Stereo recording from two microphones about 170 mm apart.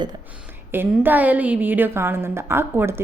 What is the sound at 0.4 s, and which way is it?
A woman's voice, 10° right (ahead or behind).